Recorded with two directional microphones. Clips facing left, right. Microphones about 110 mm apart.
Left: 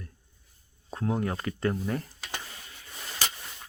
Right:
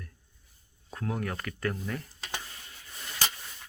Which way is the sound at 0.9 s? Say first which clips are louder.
Left 4 dB; 25° left (ahead or behind).